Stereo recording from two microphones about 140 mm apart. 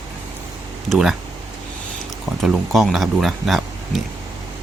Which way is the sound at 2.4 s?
Centre (ahead or behind).